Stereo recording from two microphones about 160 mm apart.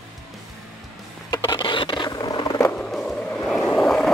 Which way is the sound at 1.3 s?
25° left (ahead or behind).